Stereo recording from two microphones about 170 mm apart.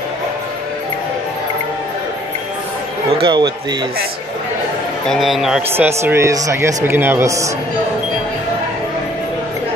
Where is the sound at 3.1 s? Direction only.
30° right (ahead or behind).